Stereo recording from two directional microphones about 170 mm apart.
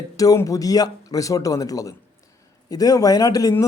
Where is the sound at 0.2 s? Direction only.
20° left (ahead or behind).